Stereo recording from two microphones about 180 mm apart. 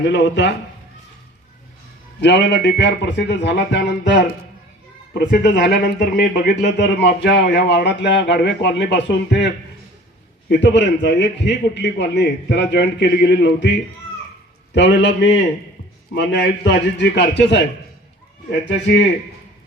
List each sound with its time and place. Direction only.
0.0 s speech: 75° left (ahead or behind)
2.2 s speech: 75° left (ahead or behind)
5.5 s speech: 70° left (ahead or behind)
10.6 s speech: 75° left (ahead or behind)
14.8 s speech: 75° left (ahead or behind)